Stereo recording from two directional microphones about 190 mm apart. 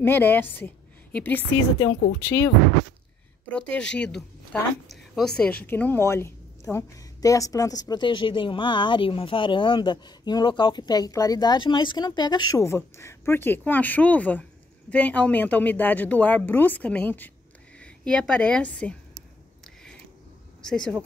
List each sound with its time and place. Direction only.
0.0 s a woman's voice: 10° left (ahead or behind)
3.5 s a woman's voice: 5° left (ahead or behind)
20.6 s speech: 5° left (ahead or behind)